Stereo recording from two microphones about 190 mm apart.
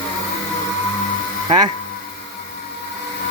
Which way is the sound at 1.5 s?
20° right (ahead or behind).